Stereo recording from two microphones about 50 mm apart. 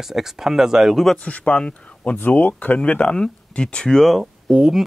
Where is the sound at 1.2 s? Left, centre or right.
Left.